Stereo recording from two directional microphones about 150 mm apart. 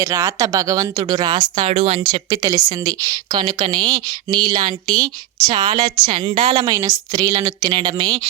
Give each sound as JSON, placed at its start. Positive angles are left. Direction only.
{"t": 0.0, "sound": "a woman's voice", "side_deg": -20}
{"t": 1.6, "sound": "a woman's voice", "side_deg": -45}
{"t": 2.0, "sound": "a woman's voice", "side_deg": -30}